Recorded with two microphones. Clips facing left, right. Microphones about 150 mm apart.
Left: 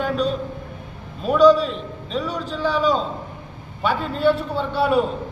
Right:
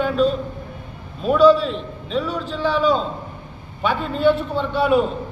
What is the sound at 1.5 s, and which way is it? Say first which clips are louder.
Speech: even; 40° left (ahead or behind).